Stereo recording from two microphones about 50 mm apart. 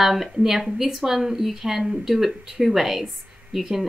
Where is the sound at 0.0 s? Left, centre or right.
Centre.